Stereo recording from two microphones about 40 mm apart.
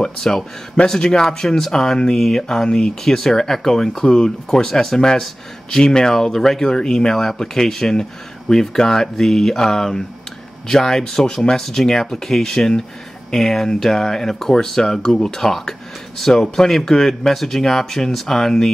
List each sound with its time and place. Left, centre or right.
0.0 s speech: centre
3.0 s speech: centre